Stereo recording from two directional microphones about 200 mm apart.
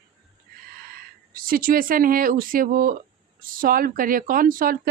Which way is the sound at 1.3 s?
45° right (ahead or behind).